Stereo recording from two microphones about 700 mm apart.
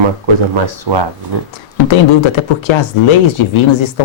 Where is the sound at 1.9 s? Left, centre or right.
Left.